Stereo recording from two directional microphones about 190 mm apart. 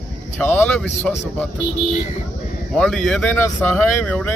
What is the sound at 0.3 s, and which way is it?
Speech, 10° left (ahead or behind).